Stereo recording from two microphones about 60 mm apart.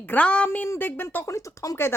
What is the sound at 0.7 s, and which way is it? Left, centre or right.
Speech, left.